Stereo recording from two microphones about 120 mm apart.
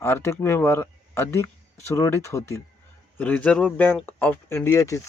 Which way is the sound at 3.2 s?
10° left (ahead or behind).